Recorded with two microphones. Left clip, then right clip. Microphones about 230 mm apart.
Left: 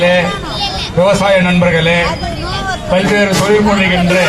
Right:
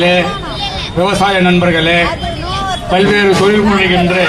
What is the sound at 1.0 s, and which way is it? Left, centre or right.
A man's voice, right.